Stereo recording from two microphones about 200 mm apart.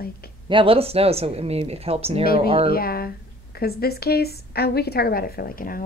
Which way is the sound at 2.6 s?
50° left (ahead or behind).